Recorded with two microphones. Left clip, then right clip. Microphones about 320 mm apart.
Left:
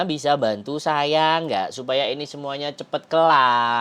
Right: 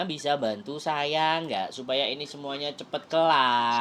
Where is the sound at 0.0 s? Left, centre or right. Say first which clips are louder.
Left 7 dB; left.